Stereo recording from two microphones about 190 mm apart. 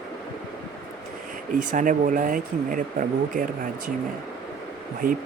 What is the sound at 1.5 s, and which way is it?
Speech, 45° right (ahead or behind).